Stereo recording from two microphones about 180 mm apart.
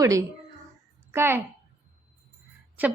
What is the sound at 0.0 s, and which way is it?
A woman's voice, 20° right (ahead or behind).